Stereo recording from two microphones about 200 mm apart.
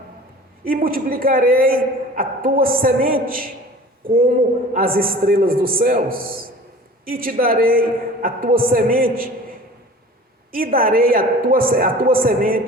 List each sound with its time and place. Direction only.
0.6 s a woman's voice: 45° right (ahead or behind)
4.7 s a woman's voice: 45° right (ahead or behind)
10.5 s a woman's voice: 45° right (ahead or behind)